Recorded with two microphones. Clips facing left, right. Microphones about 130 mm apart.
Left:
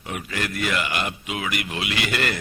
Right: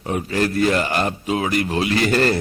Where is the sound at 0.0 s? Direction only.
35° right (ahead or behind).